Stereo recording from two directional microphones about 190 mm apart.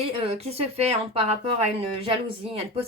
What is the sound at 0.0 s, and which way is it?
A woman's voice, 30° right (ahead or behind).